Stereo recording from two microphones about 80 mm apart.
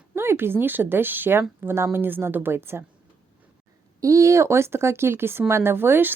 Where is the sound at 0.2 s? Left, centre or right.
Right.